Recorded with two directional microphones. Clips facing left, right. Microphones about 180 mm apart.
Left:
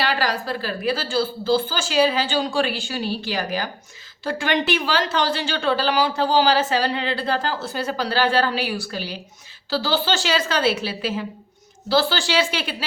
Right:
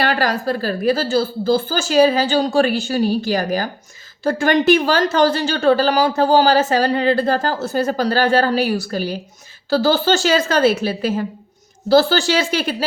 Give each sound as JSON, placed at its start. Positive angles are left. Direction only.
{"t": 0.0, "sound": "a woman's voice", "side_deg": -50}